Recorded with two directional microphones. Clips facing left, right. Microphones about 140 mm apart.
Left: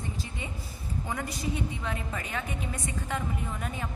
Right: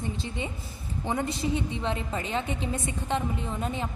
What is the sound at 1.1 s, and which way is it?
A woman's voice, 25° right (ahead or behind).